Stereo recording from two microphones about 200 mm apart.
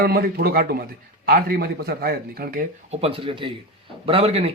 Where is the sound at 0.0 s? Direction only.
50° right (ahead or behind).